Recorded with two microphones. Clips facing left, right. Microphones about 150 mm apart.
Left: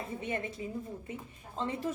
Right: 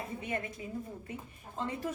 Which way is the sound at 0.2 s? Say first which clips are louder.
Left 2 dB; 25° left (ahead or behind).